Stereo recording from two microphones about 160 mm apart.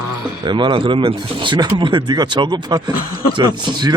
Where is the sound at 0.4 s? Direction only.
30° right (ahead or behind).